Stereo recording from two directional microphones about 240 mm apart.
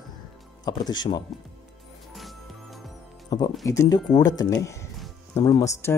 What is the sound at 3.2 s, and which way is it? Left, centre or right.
Speech, centre.